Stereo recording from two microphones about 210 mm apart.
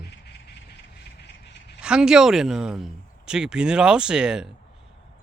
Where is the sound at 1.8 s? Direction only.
5° right (ahead or behind).